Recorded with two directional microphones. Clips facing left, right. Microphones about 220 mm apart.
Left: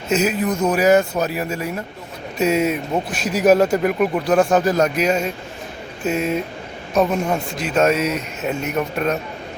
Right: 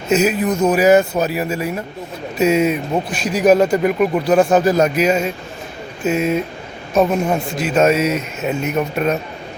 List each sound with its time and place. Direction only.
0.1 s speech: 10° right (ahead or behind)